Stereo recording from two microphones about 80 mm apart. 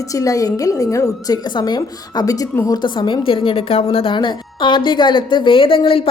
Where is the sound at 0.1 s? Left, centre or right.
Left.